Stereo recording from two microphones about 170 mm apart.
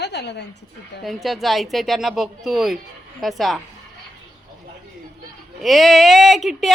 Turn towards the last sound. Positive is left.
turn(degrees=0)  # may be behind; listen again after turning